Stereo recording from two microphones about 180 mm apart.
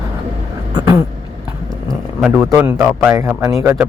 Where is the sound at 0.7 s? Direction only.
20° right (ahead or behind).